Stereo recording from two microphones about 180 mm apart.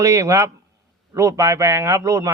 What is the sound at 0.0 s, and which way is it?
A man's voice, 15° right (ahead or behind).